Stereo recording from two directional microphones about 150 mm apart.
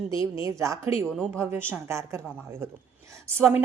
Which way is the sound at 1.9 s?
20° right (ahead or behind).